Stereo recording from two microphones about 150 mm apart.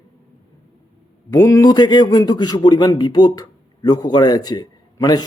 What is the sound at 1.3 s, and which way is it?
A man's voice, 25° left (ahead or behind).